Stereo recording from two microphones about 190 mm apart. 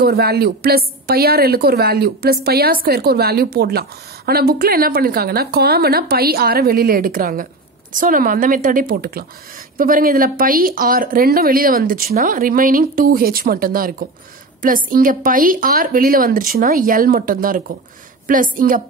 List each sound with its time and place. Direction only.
0.0 s a woman's voice: 55° right (ahead or behind)